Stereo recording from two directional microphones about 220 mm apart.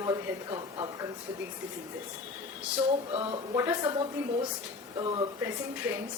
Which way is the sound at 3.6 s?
15° right (ahead or behind).